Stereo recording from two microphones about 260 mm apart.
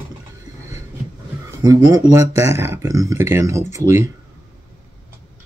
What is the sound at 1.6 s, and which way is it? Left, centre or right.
Speech, centre.